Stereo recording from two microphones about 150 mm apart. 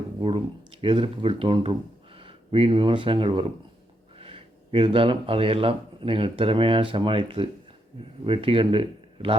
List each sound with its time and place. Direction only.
0.2 s speech: 35° right (ahead or behind)